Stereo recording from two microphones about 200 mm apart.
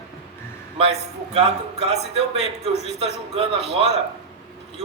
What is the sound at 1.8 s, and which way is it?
Speech, 30° right (ahead or behind).